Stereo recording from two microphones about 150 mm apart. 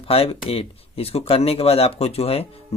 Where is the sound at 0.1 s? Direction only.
40° left (ahead or behind).